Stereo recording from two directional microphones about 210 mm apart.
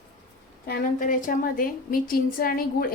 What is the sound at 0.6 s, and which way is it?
A woman's voice, 45° left (ahead or behind).